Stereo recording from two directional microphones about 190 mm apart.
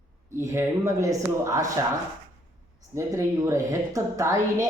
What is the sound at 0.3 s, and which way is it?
A woman's voice, 15° right (ahead or behind).